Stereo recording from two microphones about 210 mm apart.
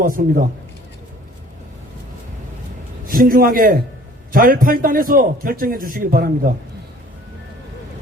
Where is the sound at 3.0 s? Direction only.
45° right (ahead or behind).